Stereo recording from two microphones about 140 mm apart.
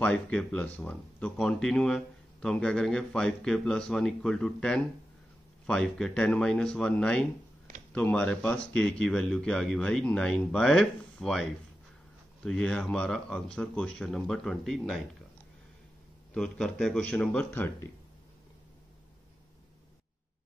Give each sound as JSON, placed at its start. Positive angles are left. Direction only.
{"t": 0.0, "sound": "speech", "side_deg": 5}
{"t": 12.4, "sound": "speech", "side_deg": 5}
{"t": 16.3, "sound": "speech", "side_deg": 5}
{"t": 17.5, "sound": "speech", "side_deg": 15}